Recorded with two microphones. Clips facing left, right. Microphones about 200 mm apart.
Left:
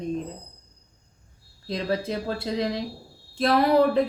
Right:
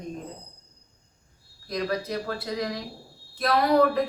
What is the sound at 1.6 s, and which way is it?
A woman's voice, 25° left (ahead or behind).